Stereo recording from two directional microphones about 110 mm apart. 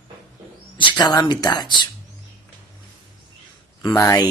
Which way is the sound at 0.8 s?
45° left (ahead or behind).